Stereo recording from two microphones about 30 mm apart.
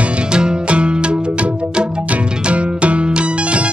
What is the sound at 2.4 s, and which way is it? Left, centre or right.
Music, right.